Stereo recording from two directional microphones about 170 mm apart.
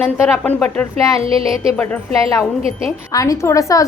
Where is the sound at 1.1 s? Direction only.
35° right (ahead or behind).